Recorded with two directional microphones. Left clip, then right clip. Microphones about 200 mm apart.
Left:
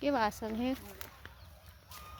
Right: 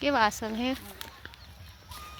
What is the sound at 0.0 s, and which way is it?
Speech, 5° right (ahead or behind).